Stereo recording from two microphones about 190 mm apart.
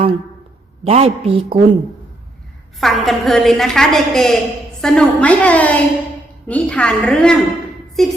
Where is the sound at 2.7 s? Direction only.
Centre (ahead or behind).